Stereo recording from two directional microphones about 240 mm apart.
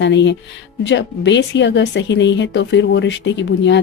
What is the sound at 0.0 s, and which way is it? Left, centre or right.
A woman's voice, left.